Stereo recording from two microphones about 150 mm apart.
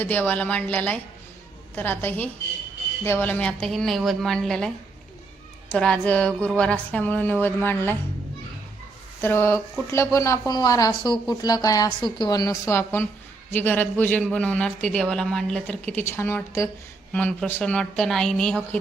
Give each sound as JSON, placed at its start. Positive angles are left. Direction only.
{"t": 0.0, "sound": "a woman's voice", "side_deg": 10}
{"t": 5.7, "sound": "speech", "side_deg": 5}
{"t": 9.2, "sound": "a woman's voice", "side_deg": 15}